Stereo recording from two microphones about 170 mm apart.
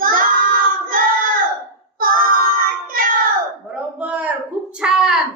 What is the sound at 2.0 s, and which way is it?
Child singing, 55° right (ahead or behind).